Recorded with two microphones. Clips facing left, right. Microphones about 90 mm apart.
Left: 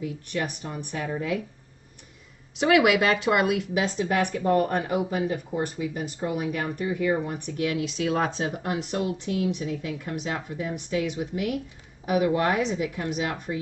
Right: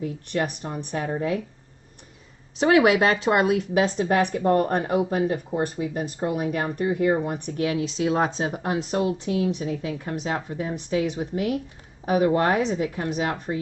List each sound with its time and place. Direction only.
0.0 s speech: 40° right (ahead or behind)
2.5 s speech: 35° right (ahead or behind)